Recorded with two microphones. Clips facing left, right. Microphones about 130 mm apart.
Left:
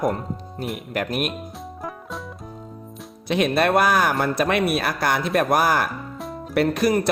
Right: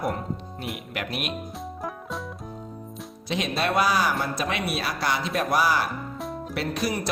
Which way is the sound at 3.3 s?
55° left (ahead or behind).